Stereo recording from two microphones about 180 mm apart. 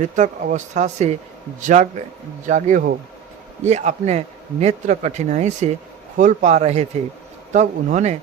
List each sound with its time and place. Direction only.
0.0 s speech: 45° right (ahead or behind)